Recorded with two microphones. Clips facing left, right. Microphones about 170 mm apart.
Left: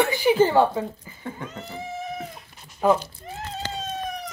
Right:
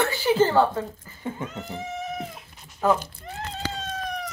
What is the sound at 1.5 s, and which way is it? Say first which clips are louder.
Cat: right 1 dB; centre (ahead or behind).